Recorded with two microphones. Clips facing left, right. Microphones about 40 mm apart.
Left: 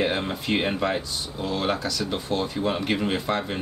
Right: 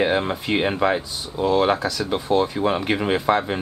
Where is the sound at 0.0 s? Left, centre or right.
Centre.